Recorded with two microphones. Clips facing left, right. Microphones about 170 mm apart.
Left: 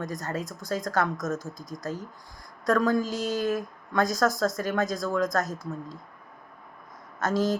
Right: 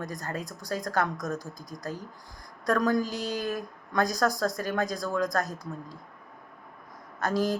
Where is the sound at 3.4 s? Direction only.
20° left (ahead or behind).